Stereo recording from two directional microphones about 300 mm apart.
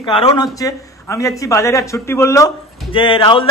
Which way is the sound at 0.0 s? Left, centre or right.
Centre.